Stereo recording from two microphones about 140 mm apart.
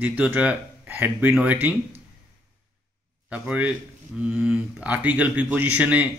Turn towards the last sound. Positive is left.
turn(degrees=-10)  # may be behind; listen again after turning